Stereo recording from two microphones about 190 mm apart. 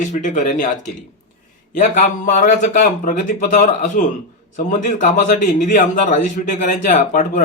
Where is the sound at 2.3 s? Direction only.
40° left (ahead or behind).